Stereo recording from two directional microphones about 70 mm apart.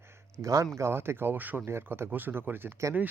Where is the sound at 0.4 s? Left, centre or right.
Right.